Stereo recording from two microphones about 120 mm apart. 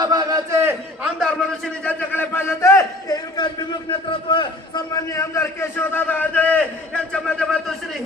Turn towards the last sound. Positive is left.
turn(degrees=5)  # may be behind; listen again after turning